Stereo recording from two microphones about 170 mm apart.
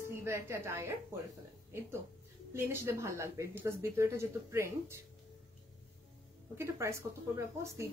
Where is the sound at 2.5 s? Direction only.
15° right (ahead or behind).